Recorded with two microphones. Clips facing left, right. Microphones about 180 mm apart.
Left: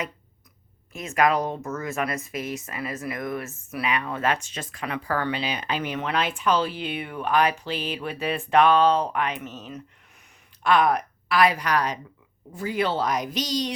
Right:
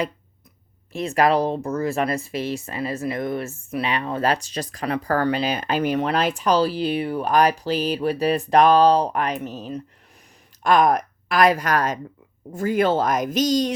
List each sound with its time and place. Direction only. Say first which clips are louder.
0.9 s a woman's voice: right 4 dB; 35° right (ahead or behind)